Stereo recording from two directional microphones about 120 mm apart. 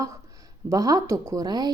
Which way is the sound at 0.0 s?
25° right (ahead or behind).